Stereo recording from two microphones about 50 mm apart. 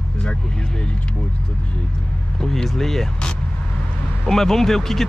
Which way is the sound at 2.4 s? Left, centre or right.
Centre.